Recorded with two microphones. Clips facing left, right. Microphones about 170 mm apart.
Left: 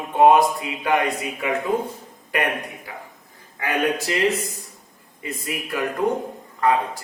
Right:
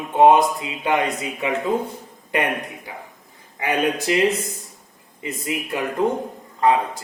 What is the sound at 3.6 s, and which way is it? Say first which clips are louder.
Speech: right 1 dB; 20° right (ahead or behind).